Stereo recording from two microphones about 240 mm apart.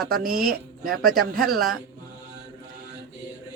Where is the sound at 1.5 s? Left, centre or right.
Centre.